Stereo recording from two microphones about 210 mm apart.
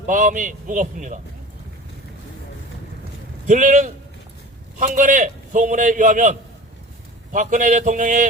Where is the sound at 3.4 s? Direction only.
40° right (ahead or behind).